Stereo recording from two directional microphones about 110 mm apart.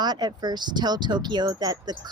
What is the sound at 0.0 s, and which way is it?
Speech, 40° right (ahead or behind).